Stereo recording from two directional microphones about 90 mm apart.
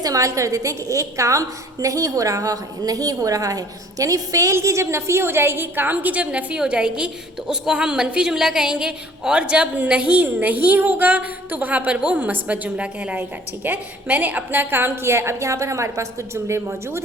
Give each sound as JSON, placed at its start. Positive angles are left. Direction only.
{"t": 0.0, "sound": "a woman's voice", "side_deg": -40}